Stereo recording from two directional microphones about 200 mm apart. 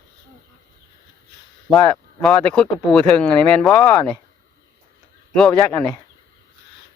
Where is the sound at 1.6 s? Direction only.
Centre (ahead or behind).